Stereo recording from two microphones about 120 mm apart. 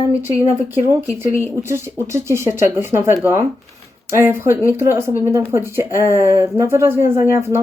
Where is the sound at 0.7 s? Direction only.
15° right (ahead or behind).